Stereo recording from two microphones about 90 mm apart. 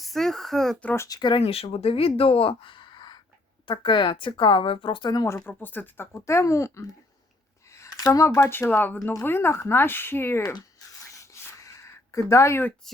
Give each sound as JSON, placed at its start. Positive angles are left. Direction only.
{"t": 0.0, "sound": "speech", "side_deg": 5}
{"t": 0.9, "sound": "speech", "side_deg": 40}
{"t": 1.2, "sound": "a woman's voice", "side_deg": 75}
{"t": 5.5, "sound": "speech", "side_deg": 20}
{"t": 7.7, "sound": "a sound", "side_deg": 35}
{"t": 8.7, "sound": "speech", "side_deg": 20}
{"t": 10.4, "sound": "a sound", "side_deg": 40}